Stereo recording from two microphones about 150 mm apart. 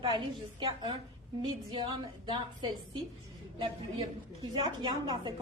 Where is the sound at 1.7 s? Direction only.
35° right (ahead or behind).